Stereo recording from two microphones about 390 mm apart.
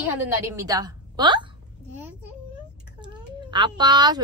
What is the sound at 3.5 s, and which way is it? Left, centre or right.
Speech, centre.